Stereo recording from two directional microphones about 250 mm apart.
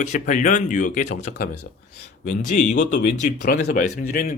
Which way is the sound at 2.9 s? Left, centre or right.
Left.